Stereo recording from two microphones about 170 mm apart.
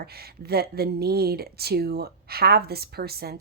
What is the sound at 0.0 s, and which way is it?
Speech, 65° right (ahead or behind).